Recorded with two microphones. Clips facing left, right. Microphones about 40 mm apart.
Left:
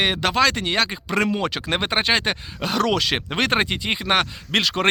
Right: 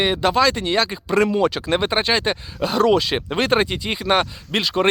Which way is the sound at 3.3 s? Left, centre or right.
Left.